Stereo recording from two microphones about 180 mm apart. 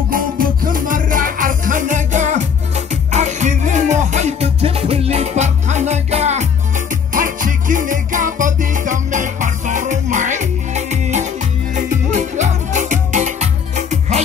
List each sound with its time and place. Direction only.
0.1 s music: 50° right (ahead or behind)
7.2 s music: 50° right (ahead or behind)